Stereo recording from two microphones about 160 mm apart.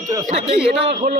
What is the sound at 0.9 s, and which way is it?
Speech, 50° right (ahead or behind).